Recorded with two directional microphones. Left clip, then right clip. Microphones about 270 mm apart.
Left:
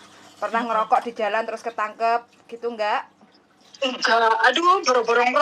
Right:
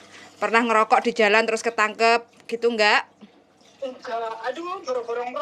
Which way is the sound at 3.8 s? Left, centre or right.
Left.